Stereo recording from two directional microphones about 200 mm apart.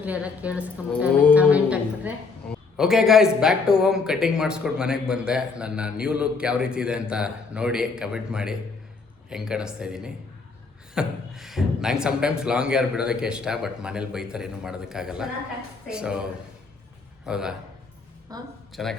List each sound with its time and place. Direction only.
0.0 s a woman's voice: 5° right (ahead or behind)
17.2 s speech: 5° right (ahead or behind)
18.3 s a woman's voice: 20° right (ahead or behind)
18.7 s speech: centre (ahead or behind)